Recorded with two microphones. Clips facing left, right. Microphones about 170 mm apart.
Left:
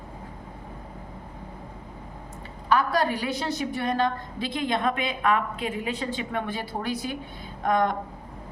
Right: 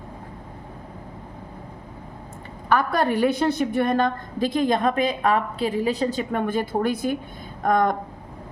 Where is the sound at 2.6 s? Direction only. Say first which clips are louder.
Right 2 dB; 55° right (ahead or behind).